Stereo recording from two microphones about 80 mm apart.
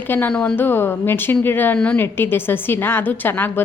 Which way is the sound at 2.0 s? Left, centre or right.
Left.